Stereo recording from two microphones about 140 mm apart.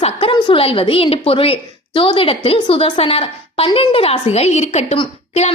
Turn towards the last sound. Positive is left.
turn(degrees=45)  # may be behind; listen again after turning